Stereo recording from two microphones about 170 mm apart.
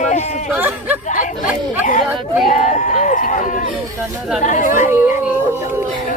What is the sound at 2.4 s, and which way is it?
Speech, 45° left (ahead or behind).